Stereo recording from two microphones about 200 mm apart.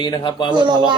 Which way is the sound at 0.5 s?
20° right (ahead or behind).